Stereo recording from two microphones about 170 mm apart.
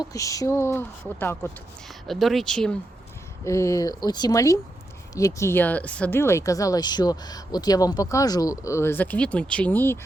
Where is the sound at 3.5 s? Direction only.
20° left (ahead or behind).